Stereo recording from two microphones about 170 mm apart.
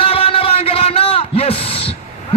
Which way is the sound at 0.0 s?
35° left (ahead or behind).